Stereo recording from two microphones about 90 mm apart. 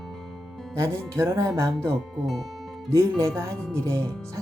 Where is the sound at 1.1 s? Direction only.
30° right (ahead or behind).